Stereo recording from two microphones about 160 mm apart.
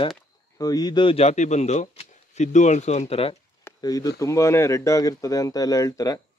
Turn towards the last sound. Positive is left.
turn(degrees=20)  # may be behind; listen again after turning